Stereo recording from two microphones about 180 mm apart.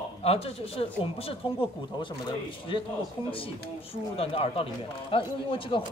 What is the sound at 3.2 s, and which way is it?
Speech, 30° left (ahead or behind).